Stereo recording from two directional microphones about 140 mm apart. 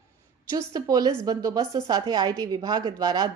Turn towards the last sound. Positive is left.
turn(degrees=-30)  # may be behind; listen again after turning